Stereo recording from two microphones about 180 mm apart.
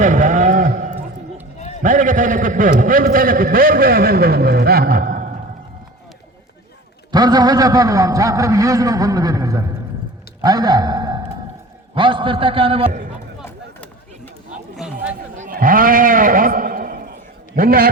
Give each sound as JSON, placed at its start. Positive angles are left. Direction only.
{"t": 0.0, "sound": "vehicle", "side_deg": -45}
{"t": 1.8, "sound": "a man's voice", "side_deg": -45}
{"t": 7.1, "sound": "a man's voice", "side_deg": -20}
{"t": 10.4, "sound": "a sound", "side_deg": -20}
{"t": 11.9, "sound": "a man's voice", "side_deg": -30}
{"t": 12.9, "sound": "a man's voice", "side_deg": -45}
{"t": 14.8, "sound": "chatter", "side_deg": -5}
{"t": 15.4, "sound": "bleat", "side_deg": -50}
{"t": 17.5, "sound": "a man's voice", "side_deg": -55}